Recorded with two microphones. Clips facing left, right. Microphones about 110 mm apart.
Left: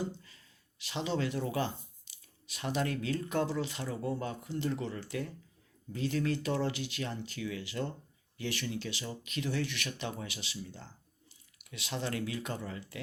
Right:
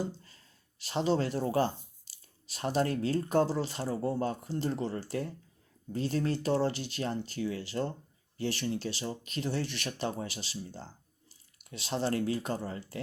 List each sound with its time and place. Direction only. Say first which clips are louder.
0.8 s speech: right 5 dB; 35° right (ahead or behind)